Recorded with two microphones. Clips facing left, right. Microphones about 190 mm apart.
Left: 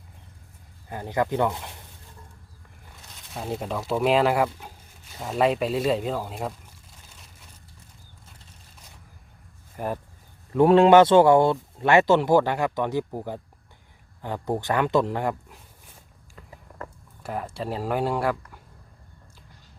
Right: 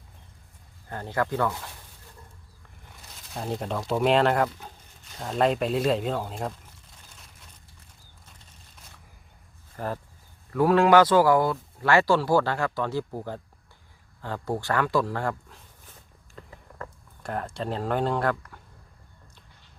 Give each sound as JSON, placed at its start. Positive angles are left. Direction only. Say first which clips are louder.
{"t": 0.9, "sound": "speech", "louder": "left 2 dB", "side_deg": 15}
{"t": 3.2, "sound": "speech", "louder": "even", "side_deg": 0}
{"t": 9.7, "sound": "speech", "louder": "left 2 dB", "side_deg": 15}
{"t": 17.2, "sound": "speech", "louder": "even", "side_deg": 5}